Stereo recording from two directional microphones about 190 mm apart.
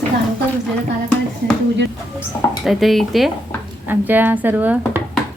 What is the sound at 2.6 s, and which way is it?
A woman's voice, centre (ahead or behind).